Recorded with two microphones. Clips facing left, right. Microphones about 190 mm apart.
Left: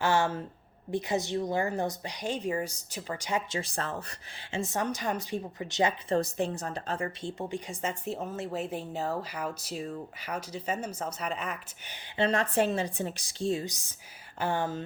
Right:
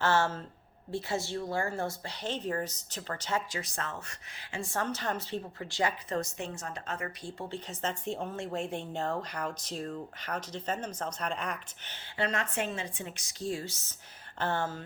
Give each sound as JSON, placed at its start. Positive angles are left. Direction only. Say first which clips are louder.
{"t": 0.0, "sound": "speech", "louder": "left 1 dB", "side_deg": 15}
{"t": 3.5, "sound": "speech", "louder": "left 4 dB", "side_deg": 30}
{"t": 12.1, "sound": "speech", "louder": "left 6 dB", "side_deg": 30}